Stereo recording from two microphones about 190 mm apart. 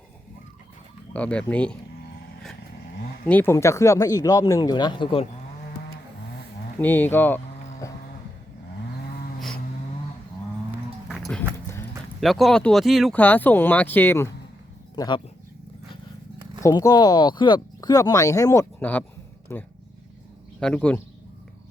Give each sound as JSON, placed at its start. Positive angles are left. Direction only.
{"t": 1.1, "sound": "speech", "side_deg": 5}
{"t": 3.2, "sound": "speech", "side_deg": 10}
{"t": 6.7, "sound": "speech", "side_deg": 10}
{"t": 11.1, "sound": "music", "side_deg": 5}
{"t": 12.2, "sound": "speech", "side_deg": 0}
{"t": 14.9, "sound": "speech", "side_deg": 20}
{"t": 16.6, "sound": "speech", "side_deg": 20}